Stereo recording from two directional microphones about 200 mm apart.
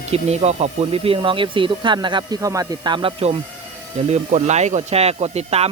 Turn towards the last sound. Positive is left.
turn(degrees=-30)  # may be behind; listen again after turning